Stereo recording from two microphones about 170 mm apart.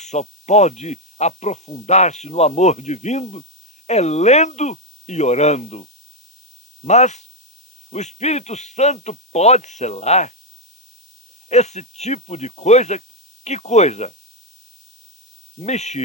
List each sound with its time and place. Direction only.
0.0 s speech: 40° left (ahead or behind)
6.8 s speech: 40° left (ahead or behind)
11.4 s speech: 40° left (ahead or behind)
15.5 s speech: 40° left (ahead or behind)